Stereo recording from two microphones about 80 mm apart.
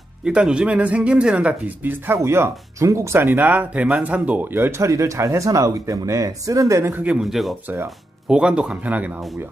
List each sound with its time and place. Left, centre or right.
0.3 s speech: centre
2.1 s speech: right; by 4.4 s centre
4.5 s speech: right
6.9 s speech: centre
7.2 s speech: centre